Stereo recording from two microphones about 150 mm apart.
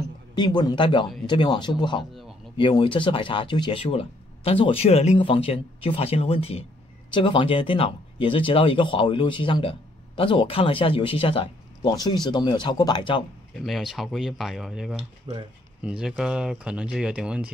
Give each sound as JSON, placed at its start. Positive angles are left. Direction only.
{"t": 0.4, "sound": "speech", "side_deg": 30}
{"t": 13.7, "sound": "speech", "side_deg": 0}
{"t": 15.0, "sound": "speech", "side_deg": -45}
{"t": 15.8, "sound": "speech", "side_deg": -5}